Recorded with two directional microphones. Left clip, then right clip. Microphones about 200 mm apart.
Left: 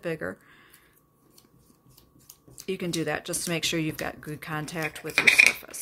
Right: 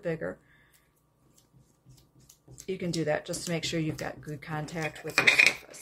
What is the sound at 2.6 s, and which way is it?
Speech, 30° left (ahead or behind).